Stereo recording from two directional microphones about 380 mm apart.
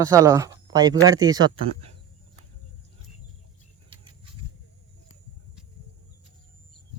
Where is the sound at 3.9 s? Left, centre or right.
Centre.